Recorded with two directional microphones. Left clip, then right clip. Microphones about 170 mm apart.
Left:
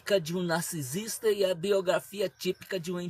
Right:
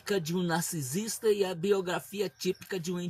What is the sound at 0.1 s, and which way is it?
Speech, 15° left (ahead or behind).